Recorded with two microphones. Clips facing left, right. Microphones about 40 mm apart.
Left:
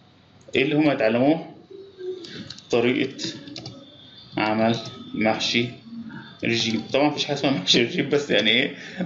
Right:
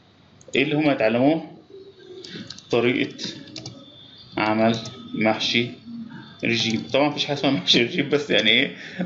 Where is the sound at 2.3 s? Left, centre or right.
Centre.